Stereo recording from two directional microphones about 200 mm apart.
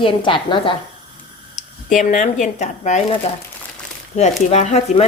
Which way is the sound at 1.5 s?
40° left (ahead or behind).